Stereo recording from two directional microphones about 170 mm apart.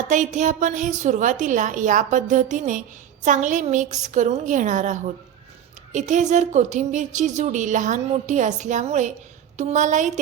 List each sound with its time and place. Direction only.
0.0 s a woman's voice: 45° right (ahead or behind)